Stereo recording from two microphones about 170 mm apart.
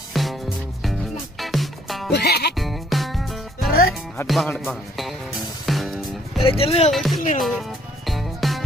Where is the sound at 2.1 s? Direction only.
75° left (ahead or behind).